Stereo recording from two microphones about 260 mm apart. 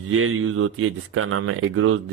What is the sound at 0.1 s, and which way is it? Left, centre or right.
Speech, right.